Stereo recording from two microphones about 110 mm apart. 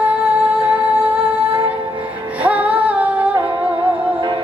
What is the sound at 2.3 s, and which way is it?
Female singing, 15° right (ahead or behind).